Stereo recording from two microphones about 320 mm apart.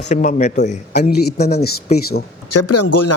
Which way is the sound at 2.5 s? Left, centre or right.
Left.